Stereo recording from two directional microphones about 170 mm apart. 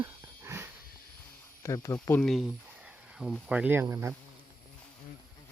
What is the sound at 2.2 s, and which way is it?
Speech, centre (ahead or behind).